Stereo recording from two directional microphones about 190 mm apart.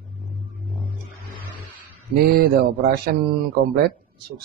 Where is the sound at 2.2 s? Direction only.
55° right (ahead or behind).